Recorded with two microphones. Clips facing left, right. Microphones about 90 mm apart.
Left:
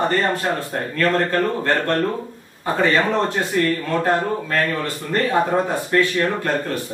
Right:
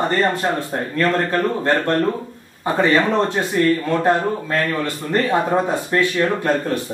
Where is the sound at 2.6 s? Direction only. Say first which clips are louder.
Right 2 dB; 20° right (ahead or behind).